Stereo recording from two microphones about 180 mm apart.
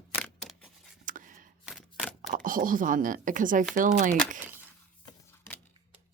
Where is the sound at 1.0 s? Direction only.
45° right (ahead or behind).